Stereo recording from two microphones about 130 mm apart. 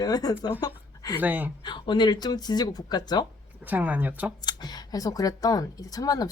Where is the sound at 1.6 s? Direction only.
35° left (ahead or behind).